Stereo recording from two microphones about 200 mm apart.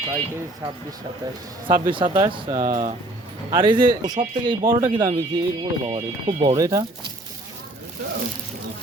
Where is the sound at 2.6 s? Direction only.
35° right (ahead or behind).